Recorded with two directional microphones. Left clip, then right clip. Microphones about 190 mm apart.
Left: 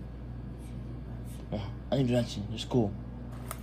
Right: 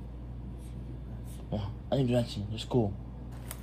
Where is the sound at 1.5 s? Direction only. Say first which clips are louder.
Even; 10° right (ahead or behind).